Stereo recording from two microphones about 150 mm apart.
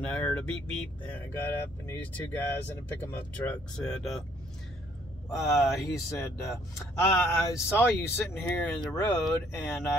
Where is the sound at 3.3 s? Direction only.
10° left (ahead or behind).